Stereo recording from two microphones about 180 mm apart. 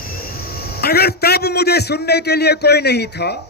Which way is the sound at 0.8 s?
60° left (ahead or behind).